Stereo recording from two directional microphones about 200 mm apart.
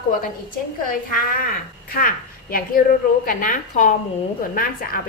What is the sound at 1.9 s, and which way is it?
A woman's voice, 45° left (ahead or behind).